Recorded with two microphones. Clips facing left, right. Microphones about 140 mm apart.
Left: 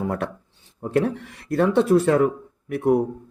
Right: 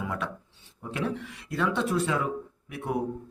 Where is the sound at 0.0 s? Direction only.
50° left (ahead or behind).